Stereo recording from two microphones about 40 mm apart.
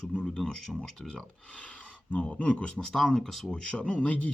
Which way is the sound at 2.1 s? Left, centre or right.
Left.